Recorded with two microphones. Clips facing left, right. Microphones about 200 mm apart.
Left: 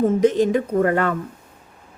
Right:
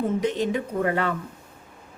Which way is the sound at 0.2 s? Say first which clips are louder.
Left 8 dB; 45° left (ahead or behind).